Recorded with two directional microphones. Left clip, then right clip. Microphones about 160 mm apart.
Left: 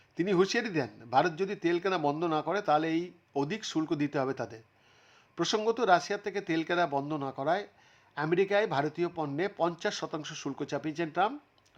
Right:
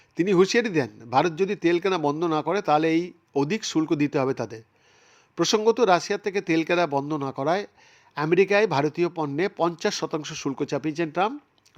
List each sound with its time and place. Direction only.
0.2 s speech: 25° right (ahead or behind)